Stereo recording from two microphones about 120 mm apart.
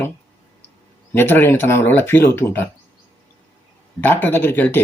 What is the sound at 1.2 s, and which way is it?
Speech, 20° left (ahead or behind).